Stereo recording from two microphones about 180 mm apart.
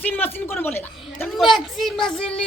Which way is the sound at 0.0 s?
10° left (ahead or behind).